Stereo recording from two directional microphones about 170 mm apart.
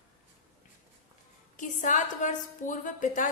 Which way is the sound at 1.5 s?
50° left (ahead or behind).